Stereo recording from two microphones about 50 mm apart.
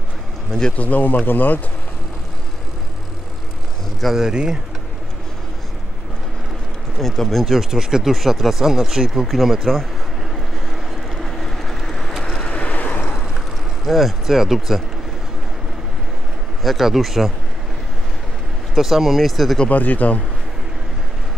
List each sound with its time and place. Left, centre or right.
0.5 s speech: centre
0.7 s speech: left
4.2 s speech: centre
7.0 s speech: centre
7.7 s speech: centre
10.3 s vehicle: centre
12.4 s vehicle: left
13.8 s speech: centre
16.6 s speech: centre
18.8 s speech: centre
19.7 s speech: left